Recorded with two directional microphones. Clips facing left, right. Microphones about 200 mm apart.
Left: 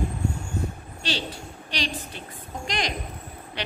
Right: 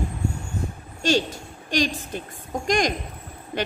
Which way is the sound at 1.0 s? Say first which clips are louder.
Right 9 dB; 45° right (ahead or behind).